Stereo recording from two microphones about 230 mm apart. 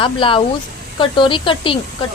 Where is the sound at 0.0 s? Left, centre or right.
Left.